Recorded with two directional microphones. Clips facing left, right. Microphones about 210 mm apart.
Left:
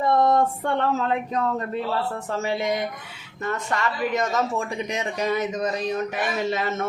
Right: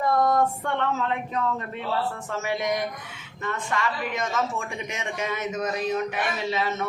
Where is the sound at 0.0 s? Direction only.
25° left (ahead or behind).